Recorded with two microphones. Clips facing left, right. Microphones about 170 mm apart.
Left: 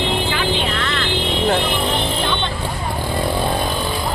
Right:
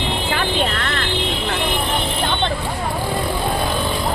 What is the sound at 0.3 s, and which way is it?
Vehicle, 50° right (ahead or behind).